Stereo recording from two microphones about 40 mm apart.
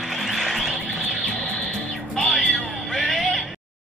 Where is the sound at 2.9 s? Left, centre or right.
Centre.